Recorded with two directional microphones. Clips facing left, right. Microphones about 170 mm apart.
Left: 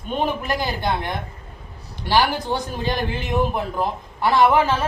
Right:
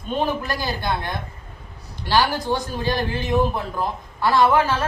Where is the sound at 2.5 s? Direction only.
20° left (ahead or behind).